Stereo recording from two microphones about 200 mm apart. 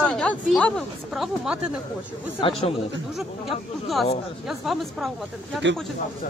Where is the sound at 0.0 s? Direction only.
5° left (ahead or behind).